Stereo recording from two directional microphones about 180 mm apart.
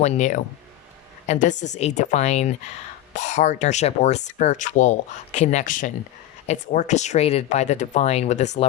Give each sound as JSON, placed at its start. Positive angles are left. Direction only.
{"t": 0.0, "sound": "speech", "side_deg": 40}